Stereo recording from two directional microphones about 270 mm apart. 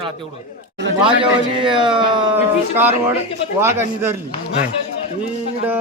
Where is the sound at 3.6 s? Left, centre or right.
Centre.